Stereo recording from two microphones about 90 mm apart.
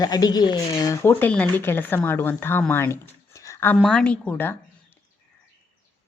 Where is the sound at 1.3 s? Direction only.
15° left (ahead or behind); by 3.7 s 35° left (ahead or behind).